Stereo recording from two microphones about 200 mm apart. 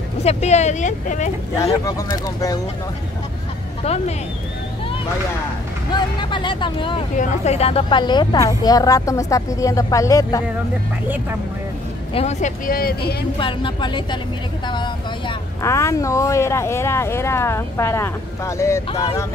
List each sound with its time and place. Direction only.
0.2 s speech: 35° left (ahead or behind)
1.6 s speech: 20° left (ahead or behind)
5.9 s speech: 20° left (ahead or behind)
12.1 s speech: 30° left (ahead or behind)
13.0 s speech: 25° left (ahead or behind)